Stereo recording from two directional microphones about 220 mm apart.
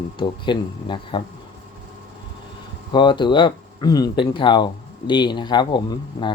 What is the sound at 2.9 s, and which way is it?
Speech, 20° left (ahead or behind).